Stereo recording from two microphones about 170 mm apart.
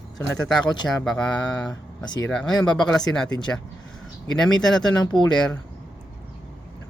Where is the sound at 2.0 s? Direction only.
25° left (ahead or behind).